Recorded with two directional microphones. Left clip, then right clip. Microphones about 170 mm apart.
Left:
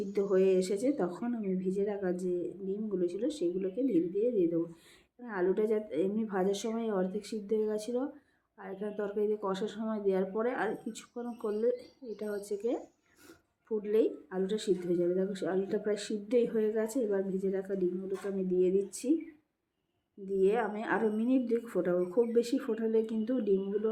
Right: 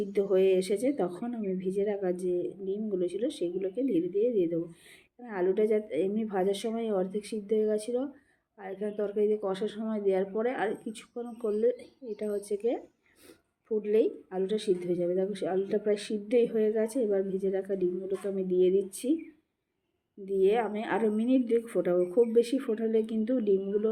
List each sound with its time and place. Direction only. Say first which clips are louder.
0.1 s speech: right 2 dB; 15° right (ahead or behind)
20.2 s speech: right 3 dB; 20° right (ahead or behind)